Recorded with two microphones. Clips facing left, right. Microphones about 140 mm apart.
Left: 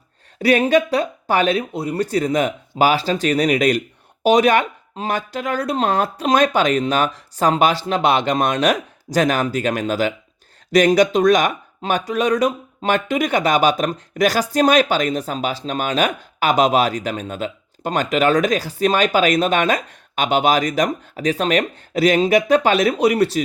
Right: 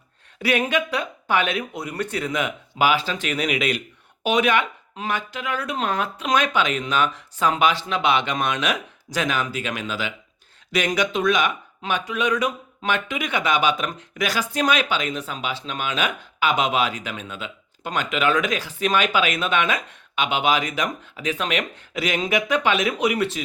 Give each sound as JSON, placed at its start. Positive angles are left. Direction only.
{"t": 0.4, "sound": "speech", "side_deg": 35}